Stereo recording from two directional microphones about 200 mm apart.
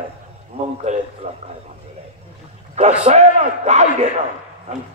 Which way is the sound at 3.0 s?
35° right (ahead or behind).